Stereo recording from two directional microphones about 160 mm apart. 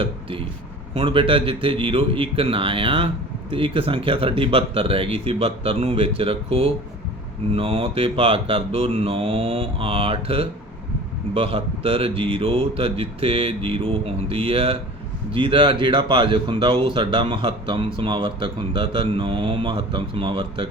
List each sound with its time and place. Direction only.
0.0 s speech: 35° right (ahead or behind)